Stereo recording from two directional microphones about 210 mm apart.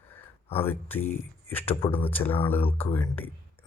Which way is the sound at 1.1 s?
10° left (ahead or behind).